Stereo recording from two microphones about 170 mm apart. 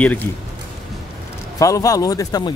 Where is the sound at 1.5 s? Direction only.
20° left (ahead or behind).